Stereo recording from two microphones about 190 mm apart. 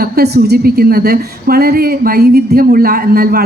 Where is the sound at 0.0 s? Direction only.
55° right (ahead or behind).